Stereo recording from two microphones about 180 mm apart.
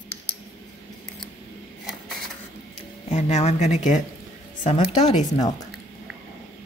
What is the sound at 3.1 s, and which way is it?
Speech, 35° left (ahead or behind).